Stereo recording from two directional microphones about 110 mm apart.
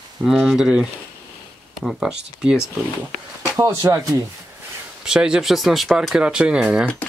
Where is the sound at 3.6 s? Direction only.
30° right (ahead or behind).